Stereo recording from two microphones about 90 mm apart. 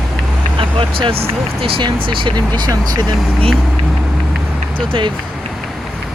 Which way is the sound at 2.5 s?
55° right (ahead or behind).